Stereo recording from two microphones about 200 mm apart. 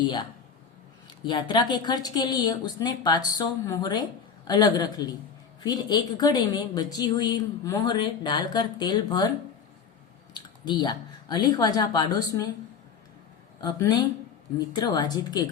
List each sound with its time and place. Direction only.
1.2 s speech: 20° left (ahead or behind)
10.3 s speech: 20° left (ahead or behind)
13.6 s speech: 20° left (ahead or behind)